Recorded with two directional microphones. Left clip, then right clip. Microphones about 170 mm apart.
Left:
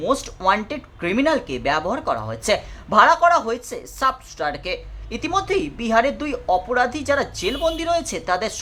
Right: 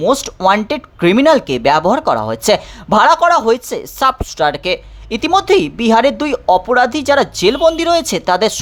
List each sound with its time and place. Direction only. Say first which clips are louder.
0.0 s speech: right 7 dB; 40° right (ahead or behind)